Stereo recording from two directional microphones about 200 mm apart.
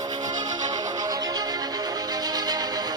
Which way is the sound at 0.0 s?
20° right (ahead or behind).